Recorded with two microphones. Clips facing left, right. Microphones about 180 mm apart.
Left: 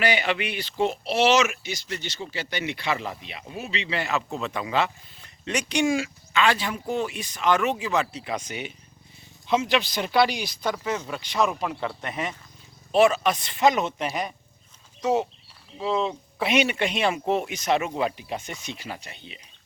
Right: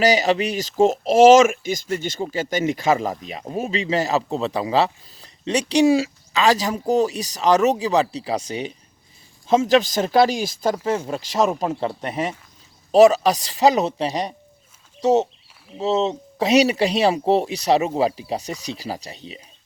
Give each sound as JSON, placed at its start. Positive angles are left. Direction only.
{"t": 0.0, "sound": "speech", "side_deg": -40}
{"t": 10.8, "sound": "speech", "side_deg": -30}
{"t": 16.4, "sound": "speech", "side_deg": -35}